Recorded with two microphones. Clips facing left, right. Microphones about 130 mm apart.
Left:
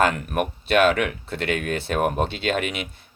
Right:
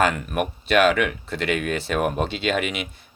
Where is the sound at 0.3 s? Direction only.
55° left (ahead or behind).